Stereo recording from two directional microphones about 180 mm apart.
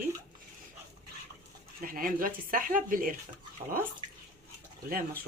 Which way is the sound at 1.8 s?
50° right (ahead or behind).